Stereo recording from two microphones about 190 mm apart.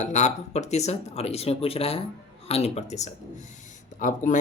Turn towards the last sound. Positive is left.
turn(degrees=40)  # may be behind; listen again after turning